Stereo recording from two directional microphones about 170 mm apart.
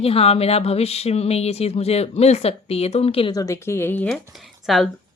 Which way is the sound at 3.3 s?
20° left (ahead or behind).